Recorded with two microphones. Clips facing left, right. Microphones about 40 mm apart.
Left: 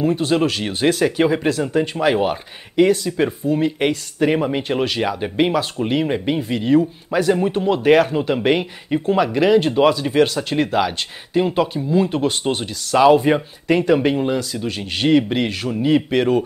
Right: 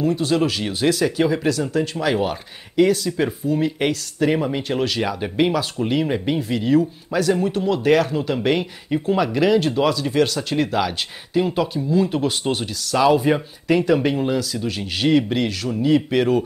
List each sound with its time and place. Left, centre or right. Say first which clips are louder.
0.0 s speech: left 2 dB; left
16.1 s speech: left 1 dB; centre